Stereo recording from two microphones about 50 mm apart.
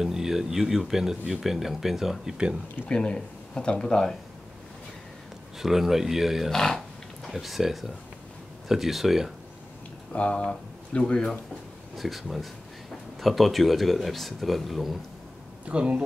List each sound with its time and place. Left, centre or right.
0.0 s speech: centre
2.9 s speech: centre
5.6 s speech: centre
6.5 s speech: centre
7.2 s speech: centre
10.1 s speech: left
12.0 s speech: centre
15.7 s speech: right